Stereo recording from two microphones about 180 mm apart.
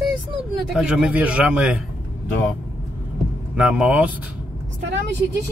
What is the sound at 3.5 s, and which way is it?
Speech, 5° right (ahead or behind).